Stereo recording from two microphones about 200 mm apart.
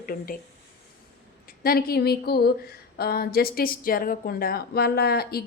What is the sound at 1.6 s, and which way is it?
Speech, 50° left (ahead or behind).